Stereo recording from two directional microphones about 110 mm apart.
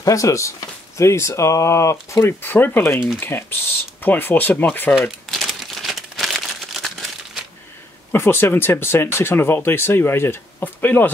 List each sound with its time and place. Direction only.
0.0 s speech: 30° left (ahead or behind)
5.0 s crumpling: 5° left (ahead or behind)
8.1 s speech: 20° left (ahead or behind)